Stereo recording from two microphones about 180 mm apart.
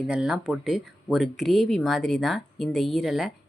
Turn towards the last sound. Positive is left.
turn(degrees=0)  # may be behind; listen again after turning